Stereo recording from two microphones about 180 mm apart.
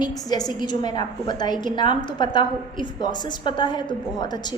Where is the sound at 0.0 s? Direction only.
20° left (ahead or behind).